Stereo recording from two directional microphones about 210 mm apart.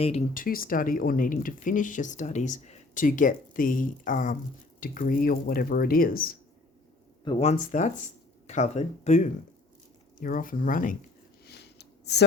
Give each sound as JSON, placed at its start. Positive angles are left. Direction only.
{"t": 0.0, "sound": "speech", "side_deg": 30}
{"t": 0.3, "sound": "speech", "side_deg": 45}
{"t": 7.3, "sound": "speech", "side_deg": 30}
{"t": 11.4, "sound": "a sound", "side_deg": 50}